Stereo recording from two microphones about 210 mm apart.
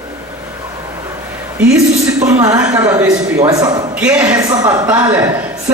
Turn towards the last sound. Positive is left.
turn(degrees=-10)  # may be behind; listen again after turning